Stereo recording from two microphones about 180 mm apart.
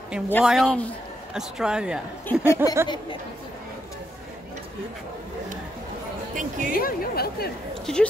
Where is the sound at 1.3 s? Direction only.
5° right (ahead or behind).